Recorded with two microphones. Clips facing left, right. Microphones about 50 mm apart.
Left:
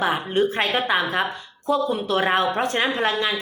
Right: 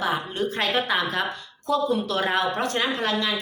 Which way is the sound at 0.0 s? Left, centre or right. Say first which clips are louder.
Left 5 dB; left.